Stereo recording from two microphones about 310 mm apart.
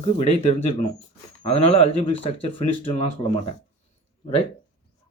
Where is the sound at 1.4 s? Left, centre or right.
Centre.